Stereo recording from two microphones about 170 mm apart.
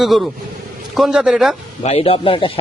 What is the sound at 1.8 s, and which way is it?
Speech, 35° left (ahead or behind).